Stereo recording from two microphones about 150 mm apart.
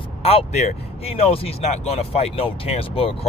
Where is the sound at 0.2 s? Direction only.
40° left (ahead or behind).